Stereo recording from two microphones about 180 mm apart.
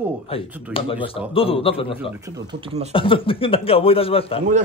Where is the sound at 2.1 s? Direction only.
20° right (ahead or behind).